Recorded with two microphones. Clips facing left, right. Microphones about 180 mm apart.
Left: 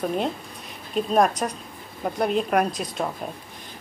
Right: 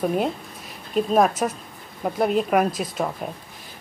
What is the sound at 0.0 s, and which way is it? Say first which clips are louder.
Speech: right 3 dB; 5° right (ahead or behind).